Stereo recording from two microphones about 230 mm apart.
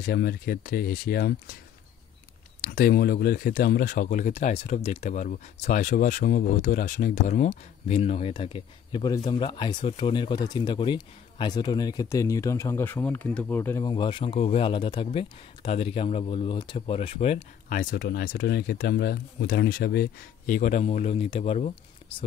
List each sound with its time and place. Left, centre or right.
0.0 s speech: left
2.6 s speech: left